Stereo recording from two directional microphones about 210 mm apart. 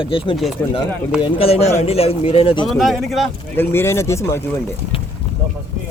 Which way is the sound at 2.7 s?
Centre (ahead or behind).